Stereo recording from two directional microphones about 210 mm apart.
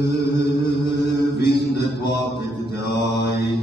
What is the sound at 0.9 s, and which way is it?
Mantra, 55° left (ahead or behind).